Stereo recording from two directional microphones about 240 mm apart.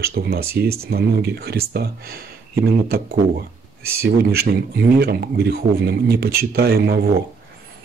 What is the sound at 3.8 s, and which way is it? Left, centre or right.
Speech, right.